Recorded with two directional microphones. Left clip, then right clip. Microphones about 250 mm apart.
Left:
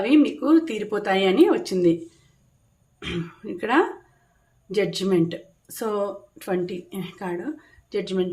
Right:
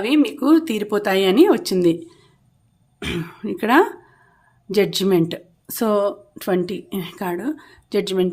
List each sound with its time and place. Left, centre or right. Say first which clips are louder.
0.0 s speech: right 1 dB; right
3.0 s speech: right 5 dB; right